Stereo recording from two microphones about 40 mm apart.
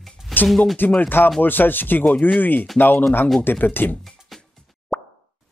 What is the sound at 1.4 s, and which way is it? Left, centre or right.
Speech, left.